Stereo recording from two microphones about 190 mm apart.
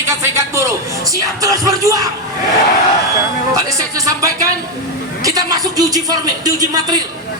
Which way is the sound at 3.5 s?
20° right (ahead or behind).